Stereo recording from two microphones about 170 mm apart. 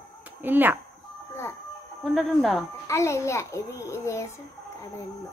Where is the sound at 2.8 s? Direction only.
15° left (ahead or behind).